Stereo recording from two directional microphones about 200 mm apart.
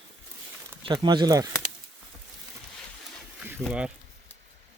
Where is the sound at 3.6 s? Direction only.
5° right (ahead or behind).